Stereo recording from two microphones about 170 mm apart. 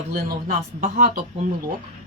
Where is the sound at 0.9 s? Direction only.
50° right (ahead or behind).